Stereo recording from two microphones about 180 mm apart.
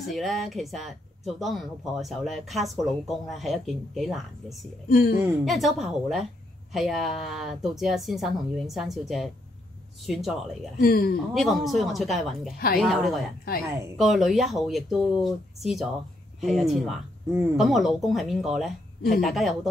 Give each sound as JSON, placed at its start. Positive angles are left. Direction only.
{"t": 0.0, "sound": "speech", "side_deg": 0}
{"t": 4.8, "sound": "speech", "side_deg": 55}
{"t": 5.4, "sound": "speech", "side_deg": 0}
{"t": 10.8, "sound": "speech", "side_deg": 55}
{"t": 11.3, "sound": "speech", "side_deg": 0}